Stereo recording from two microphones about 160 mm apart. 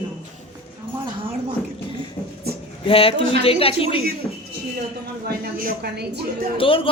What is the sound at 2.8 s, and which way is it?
Speech, 35° left (ahead or behind).